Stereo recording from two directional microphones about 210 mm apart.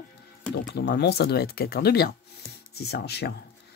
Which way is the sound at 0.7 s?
55° left (ahead or behind).